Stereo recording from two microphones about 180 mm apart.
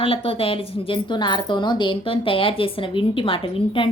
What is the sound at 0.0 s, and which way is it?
A woman's voice, 30° left (ahead or behind).